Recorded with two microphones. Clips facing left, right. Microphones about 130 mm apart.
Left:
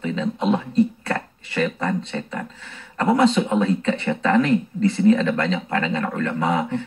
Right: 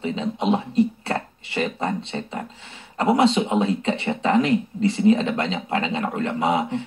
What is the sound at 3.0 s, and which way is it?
Speech, 20° right (ahead or behind).